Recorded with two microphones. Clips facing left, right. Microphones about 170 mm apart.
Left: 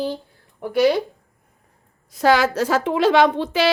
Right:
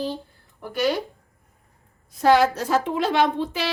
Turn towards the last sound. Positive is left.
turn(degrees=90)